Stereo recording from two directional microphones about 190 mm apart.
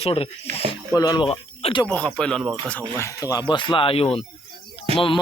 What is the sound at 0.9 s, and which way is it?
Speech, 20° left (ahead or behind).